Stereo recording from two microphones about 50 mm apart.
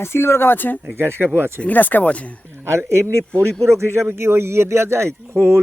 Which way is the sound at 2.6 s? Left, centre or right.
Right.